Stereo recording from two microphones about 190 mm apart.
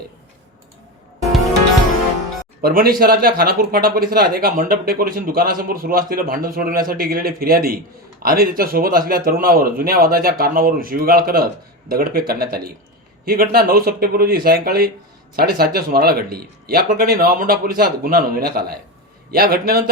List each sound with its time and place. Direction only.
2.6 s speech: 50° right (ahead or behind)